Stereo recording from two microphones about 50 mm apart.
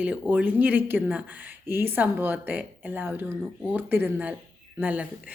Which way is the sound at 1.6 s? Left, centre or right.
Right.